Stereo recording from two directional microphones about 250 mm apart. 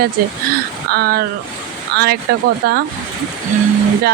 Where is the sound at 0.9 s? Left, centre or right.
Right.